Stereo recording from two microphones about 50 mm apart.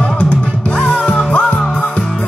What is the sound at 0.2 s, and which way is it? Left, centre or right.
Music, left.